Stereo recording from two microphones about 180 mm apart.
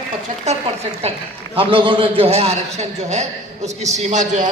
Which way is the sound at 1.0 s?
35° right (ahead or behind).